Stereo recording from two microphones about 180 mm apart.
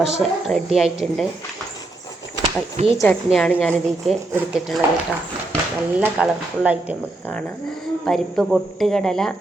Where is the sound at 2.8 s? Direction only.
40° right (ahead or behind).